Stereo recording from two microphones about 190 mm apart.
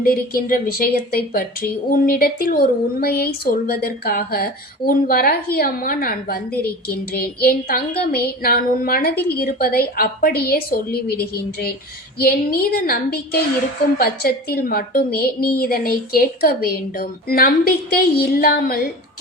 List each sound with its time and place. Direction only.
0.0 s a woman's voice: 50° left (ahead or behind)